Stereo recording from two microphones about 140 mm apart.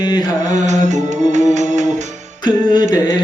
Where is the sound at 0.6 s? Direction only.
55° right (ahead or behind).